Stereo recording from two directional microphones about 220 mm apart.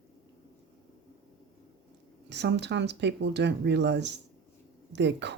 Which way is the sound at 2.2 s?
50° right (ahead or behind).